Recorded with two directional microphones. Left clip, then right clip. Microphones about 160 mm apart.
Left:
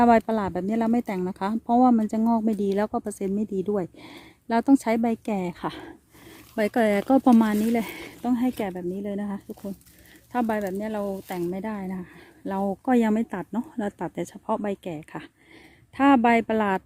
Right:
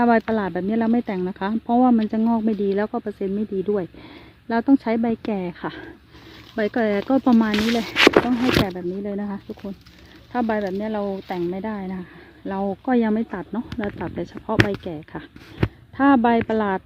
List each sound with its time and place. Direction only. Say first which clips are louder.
0.0 s speech: even; 40° left (ahead or behind)